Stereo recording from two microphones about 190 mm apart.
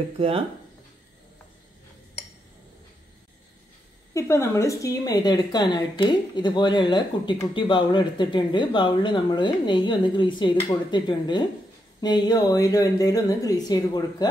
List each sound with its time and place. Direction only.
4.1 s a woman's voice: 15° left (ahead or behind)